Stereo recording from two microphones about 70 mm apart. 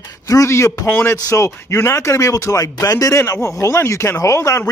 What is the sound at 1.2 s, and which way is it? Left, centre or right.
Speech, left.